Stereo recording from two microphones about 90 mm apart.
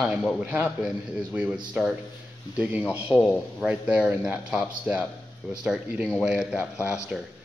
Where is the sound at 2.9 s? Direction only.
15° right (ahead or behind).